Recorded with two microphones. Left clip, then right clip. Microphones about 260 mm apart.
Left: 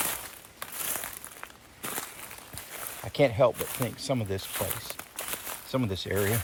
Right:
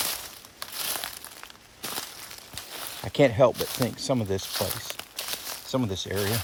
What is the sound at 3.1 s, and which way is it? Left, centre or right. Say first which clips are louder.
Speech: right 3 dB; right.